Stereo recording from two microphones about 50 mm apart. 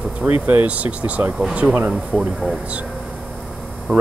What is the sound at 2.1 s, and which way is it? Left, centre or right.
Speech, centre.